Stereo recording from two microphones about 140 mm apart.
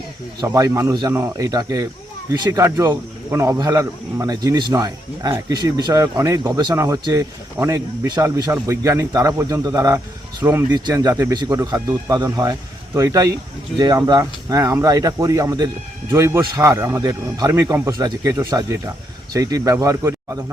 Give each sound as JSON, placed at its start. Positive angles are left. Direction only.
{"t": 0.4, "sound": "speech", "side_deg": -25}